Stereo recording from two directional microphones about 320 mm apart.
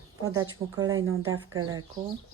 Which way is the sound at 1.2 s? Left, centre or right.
Right.